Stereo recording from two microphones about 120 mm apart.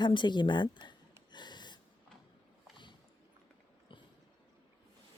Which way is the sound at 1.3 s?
40° left (ahead or behind).